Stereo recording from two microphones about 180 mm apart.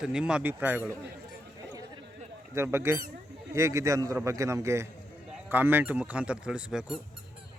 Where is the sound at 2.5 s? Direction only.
15° right (ahead or behind).